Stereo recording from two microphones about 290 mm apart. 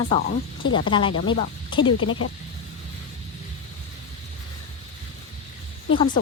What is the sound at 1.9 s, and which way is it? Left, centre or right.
Speech, left.